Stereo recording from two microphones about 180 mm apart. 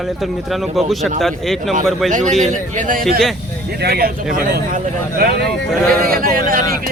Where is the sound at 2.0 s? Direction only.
40° right (ahead or behind).